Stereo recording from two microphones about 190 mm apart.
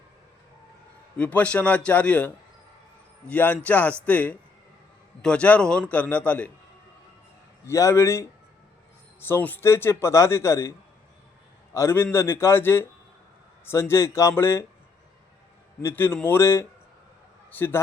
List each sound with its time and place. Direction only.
1.1 s a man's voice: 5° left (ahead or behind)
7.7 s a man's voice: 15° left (ahead or behind)
15.8 s a man's voice: 10° left (ahead or behind)